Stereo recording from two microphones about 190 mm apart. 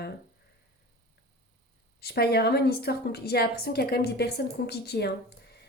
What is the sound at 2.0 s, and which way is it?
A woman's voice, 55° left (ahead or behind).